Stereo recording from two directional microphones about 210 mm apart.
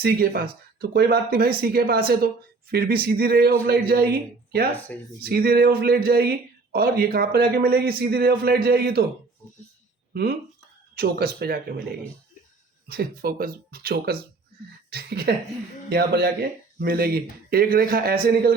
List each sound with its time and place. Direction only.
0.0 s speech: 45° right (ahead or behind)
4.7 s speech: 10° left (ahead or behind)
5.2 s speech: 45° right (ahead or behind)
10.9 s speech: 45° right (ahead or behind)